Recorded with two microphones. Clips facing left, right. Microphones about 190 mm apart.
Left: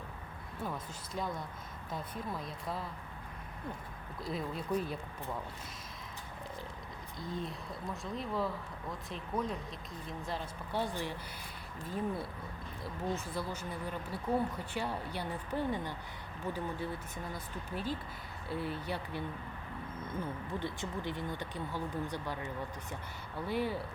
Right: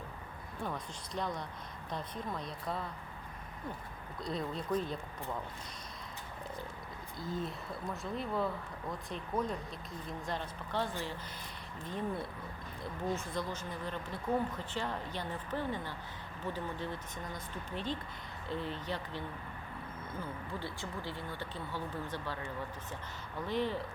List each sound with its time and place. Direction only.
0.6 s speech: 5° left (ahead or behind)
4.2 s speech: 5° left (ahead or behind)
7.2 s speech: centre (ahead or behind)
20.5 s speech: 20° left (ahead or behind)
23.5 s speech: 10° left (ahead or behind)